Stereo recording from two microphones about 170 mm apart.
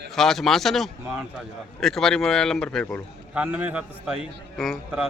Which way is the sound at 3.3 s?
10° right (ahead or behind).